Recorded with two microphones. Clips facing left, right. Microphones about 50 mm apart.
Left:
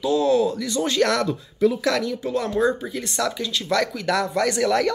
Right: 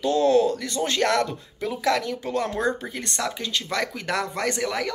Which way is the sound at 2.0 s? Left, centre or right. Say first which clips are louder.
Left 2 dB; right.